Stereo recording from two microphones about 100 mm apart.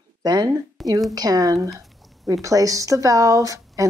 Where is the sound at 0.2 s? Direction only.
40° right (ahead or behind).